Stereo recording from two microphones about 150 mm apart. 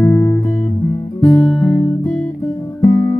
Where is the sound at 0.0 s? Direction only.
15° left (ahead or behind).